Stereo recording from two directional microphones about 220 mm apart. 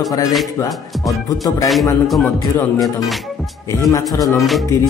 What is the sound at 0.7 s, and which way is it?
Music, centre (ahead or behind).